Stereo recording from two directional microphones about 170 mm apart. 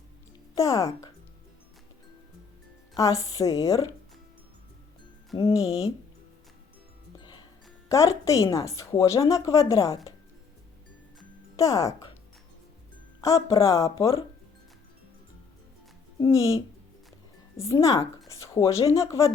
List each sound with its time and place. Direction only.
0.5 s a woman's voice: 20° left (ahead or behind)
2.9 s a woman's voice: 20° left (ahead or behind)
5.3 s a woman's voice: 30° left (ahead or behind)
7.2 s music: 25° left (ahead or behind)
7.9 s a woman's voice: 20° left (ahead or behind)
11.5 s speech: 20° left (ahead or behind)
13.2 s a woman's voice: 20° left (ahead or behind)
16.1 s a woman's voice: 20° left (ahead or behind)